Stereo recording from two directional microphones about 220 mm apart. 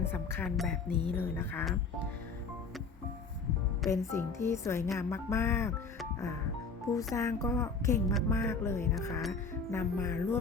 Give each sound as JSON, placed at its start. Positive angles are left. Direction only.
{"t": 0.0, "sound": "speech", "side_deg": 10}
{"t": 0.9, "sound": "speech", "side_deg": -20}
{"t": 1.1, "sound": "speech", "side_deg": 10}
{"t": 3.8, "sound": "speech", "side_deg": 15}
{"t": 7.1, "sound": "speech", "side_deg": 15}